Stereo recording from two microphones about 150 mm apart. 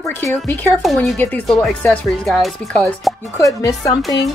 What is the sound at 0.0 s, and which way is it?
Speech, 15° left (ahead or behind).